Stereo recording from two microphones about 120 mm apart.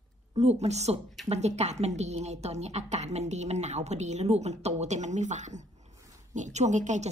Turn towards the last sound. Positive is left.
turn(degrees=-85)